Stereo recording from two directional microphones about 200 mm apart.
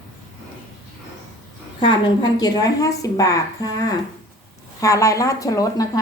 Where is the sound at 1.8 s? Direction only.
20° left (ahead or behind).